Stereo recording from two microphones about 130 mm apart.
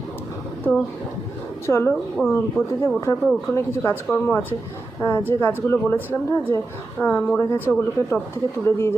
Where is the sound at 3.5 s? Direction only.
20° left (ahead or behind).